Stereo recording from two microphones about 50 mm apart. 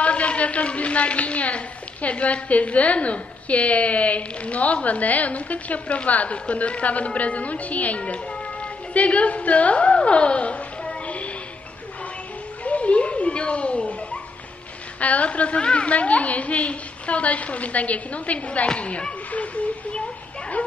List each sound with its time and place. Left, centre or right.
0.0 s a woman's voice: left
12.6 s chuckle: left
15.0 s a woman's voice: left